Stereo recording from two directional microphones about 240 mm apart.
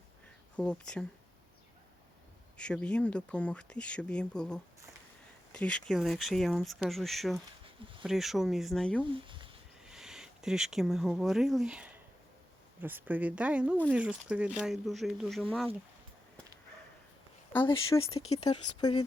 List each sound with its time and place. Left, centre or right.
0.5 s speech: centre
2.6 s speech: centre
9.1 s speech: right
9.9 s speech: centre
17.6 s speech: centre